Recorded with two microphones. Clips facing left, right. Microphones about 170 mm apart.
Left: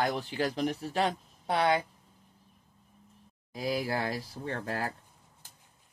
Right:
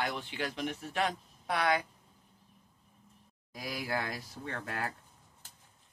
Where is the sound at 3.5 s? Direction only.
30° left (ahead or behind).